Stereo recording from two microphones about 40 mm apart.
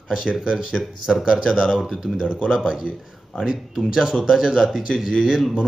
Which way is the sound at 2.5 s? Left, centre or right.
Centre.